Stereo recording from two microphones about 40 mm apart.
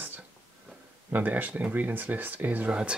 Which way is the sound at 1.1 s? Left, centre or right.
Right.